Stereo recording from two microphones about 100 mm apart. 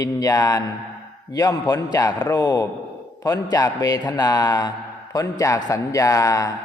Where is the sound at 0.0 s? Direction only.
35° left (ahead or behind).